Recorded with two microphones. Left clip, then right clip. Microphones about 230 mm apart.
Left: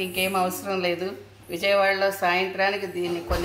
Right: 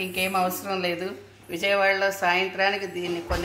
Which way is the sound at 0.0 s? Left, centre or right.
Right.